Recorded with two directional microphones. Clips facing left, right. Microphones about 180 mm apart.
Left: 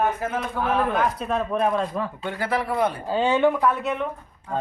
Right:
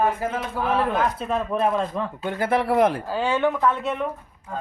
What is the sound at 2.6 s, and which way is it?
Speech, 80° right.